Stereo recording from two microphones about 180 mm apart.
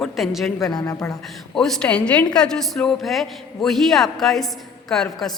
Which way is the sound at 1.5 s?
Centre (ahead or behind).